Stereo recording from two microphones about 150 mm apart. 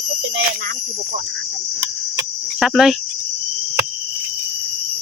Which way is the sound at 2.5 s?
Centre (ahead or behind).